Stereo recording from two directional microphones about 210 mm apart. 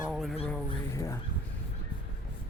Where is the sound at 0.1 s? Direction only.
Centre (ahead or behind).